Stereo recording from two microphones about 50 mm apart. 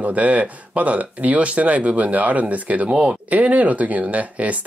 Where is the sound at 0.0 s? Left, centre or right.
Right.